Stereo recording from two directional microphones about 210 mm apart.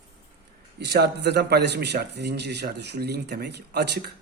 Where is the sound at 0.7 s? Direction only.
55° right (ahead or behind).